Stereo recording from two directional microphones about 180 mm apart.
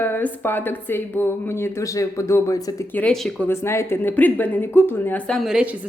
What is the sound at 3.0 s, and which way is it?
Speech, 5° left (ahead or behind).